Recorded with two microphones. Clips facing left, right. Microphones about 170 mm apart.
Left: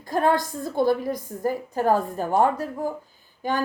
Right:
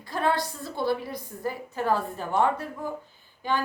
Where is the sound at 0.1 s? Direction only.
45° left (ahead or behind).